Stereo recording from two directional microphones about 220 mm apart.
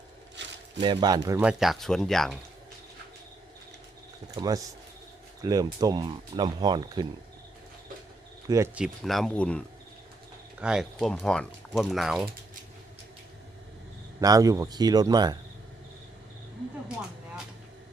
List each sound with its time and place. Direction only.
0.4 s a sound: 55° right (ahead or behind)
0.8 s speech: 20° right (ahead or behind)
1.4 s speech: 5° right (ahead or behind)
4.4 s speech: 15° right (ahead or behind)
8.4 s speech: 15° right (ahead or behind)
14.2 s speech: 15° right (ahead or behind)